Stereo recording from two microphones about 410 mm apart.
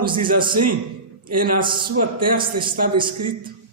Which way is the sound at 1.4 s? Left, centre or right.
Centre.